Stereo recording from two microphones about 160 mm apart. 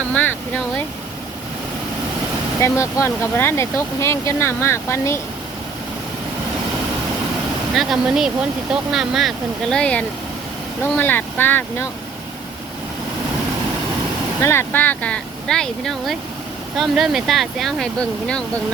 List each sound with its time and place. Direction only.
0.1 s a sound: 10° left (ahead or behind)
2.6 s speech: 15° left (ahead or behind)
7.8 s speech: centre (ahead or behind)
14.4 s speech: 15° left (ahead or behind)